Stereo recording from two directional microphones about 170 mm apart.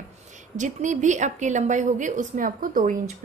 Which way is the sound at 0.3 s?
45° right (ahead or behind).